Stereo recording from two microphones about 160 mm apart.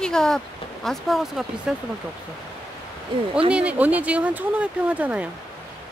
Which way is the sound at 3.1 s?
35° right (ahead or behind).